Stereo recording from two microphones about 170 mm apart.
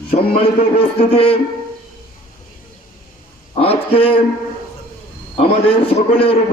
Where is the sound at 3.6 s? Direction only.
35° left (ahead or behind).